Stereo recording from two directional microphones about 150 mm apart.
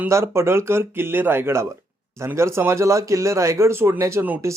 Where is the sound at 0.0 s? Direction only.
20° right (ahead or behind).